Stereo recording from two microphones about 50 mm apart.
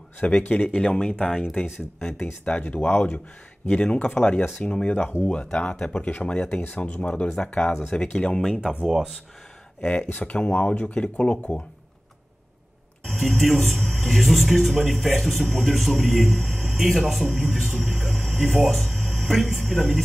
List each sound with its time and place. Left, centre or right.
0.4 s speech: left
0.7 s speech: centre
2.7 s speech: left
3.7 s speech: left
8.8 s speech: centre
9.8 s speech: left
13.0 s a man's voice: centre